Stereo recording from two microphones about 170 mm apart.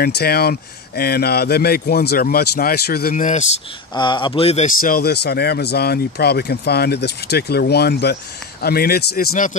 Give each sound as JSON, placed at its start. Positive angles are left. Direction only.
{"t": 0.0, "sound": "a man's voice", "side_deg": 65}
{"t": 3.9, "sound": "speech", "side_deg": 25}
{"t": 4.6, "sound": "a man's voice", "side_deg": 55}